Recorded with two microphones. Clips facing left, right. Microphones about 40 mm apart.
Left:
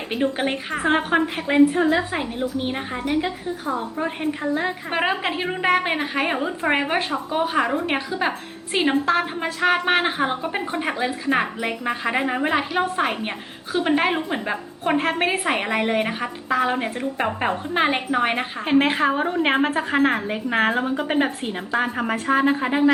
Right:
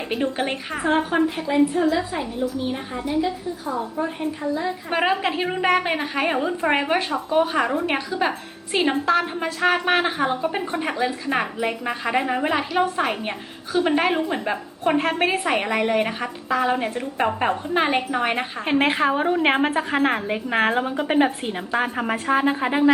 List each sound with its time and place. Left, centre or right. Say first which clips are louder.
0.1 s a woman's voice: left 2 dB; centre
0.9 s a woman's voice: even; left
4.9 s a woman's voice: right 3 dB; centre
18.6 s a woman's voice: left 1 dB; centre